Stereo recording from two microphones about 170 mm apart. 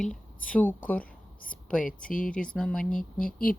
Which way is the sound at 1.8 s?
55° left (ahead or behind).